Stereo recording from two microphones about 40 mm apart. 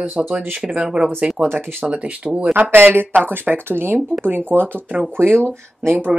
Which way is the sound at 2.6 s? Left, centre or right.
Right.